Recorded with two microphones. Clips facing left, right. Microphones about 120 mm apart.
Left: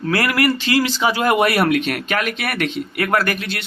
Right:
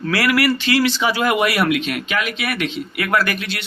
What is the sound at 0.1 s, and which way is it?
Speech, 40° left (ahead or behind).